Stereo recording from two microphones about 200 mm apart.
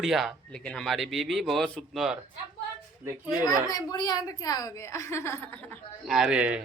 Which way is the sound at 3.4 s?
20° left (ahead or behind).